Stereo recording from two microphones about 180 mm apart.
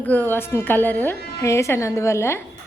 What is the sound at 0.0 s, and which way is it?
A woman's voice, 10° left (ahead or behind).